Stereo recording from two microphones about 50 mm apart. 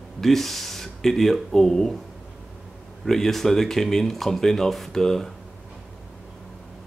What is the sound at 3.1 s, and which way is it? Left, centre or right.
Speech, centre.